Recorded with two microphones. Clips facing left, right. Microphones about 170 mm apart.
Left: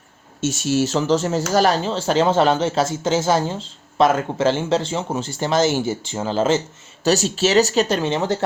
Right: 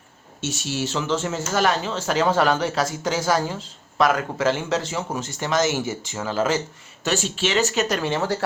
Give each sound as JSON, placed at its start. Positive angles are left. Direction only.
{"t": 0.4, "sound": "speech", "side_deg": 45}
{"t": 7.0, "sound": "speech", "side_deg": 40}